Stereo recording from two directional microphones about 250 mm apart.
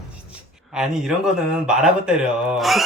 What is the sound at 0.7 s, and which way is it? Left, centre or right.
Speech, centre.